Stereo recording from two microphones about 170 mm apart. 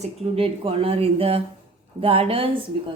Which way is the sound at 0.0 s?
35° right (ahead or behind).